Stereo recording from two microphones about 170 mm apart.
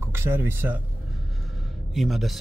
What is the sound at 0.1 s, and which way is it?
Speech, 15° right (ahead or behind).